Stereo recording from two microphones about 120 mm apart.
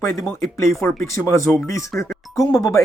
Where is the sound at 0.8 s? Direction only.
25° left (ahead or behind).